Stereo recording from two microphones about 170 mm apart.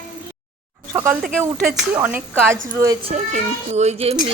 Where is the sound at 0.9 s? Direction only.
10° right (ahead or behind).